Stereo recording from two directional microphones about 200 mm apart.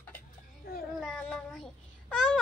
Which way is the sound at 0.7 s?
50° left (ahead or behind).